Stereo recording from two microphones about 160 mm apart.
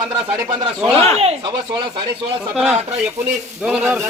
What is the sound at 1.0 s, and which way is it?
Speech, 40° right (ahead or behind).